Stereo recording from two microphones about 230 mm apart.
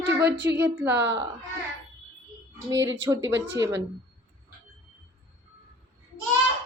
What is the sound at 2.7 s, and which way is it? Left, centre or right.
Speech, right.